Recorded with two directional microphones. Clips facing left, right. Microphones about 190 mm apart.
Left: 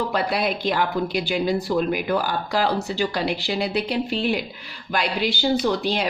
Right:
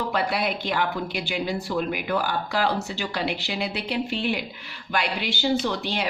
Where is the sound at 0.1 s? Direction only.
40° left (ahead or behind).